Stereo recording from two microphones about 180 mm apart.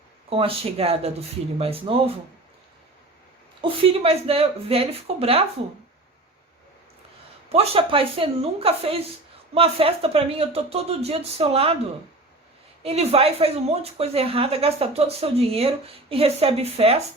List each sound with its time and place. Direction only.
0.3 s speech: 30° right (ahead or behind)
3.6 s speech: 30° right (ahead or behind)
7.5 s speech: 35° right (ahead or behind)
12.8 s speech: 35° right (ahead or behind)